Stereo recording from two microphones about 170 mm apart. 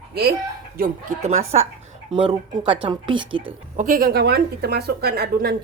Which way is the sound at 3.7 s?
55° right (ahead or behind).